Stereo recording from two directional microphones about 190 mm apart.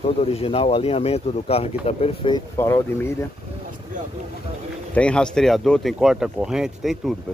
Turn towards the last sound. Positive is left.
turn(degrees=0)  # may be behind; listen again after turning